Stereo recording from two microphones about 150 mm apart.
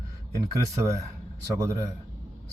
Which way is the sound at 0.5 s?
20° right (ahead or behind).